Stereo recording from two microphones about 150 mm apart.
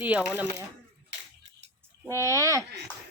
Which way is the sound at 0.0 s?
10° right (ahead or behind).